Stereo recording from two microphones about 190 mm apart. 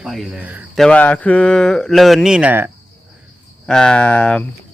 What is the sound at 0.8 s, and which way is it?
Speech, 5° left (ahead or behind).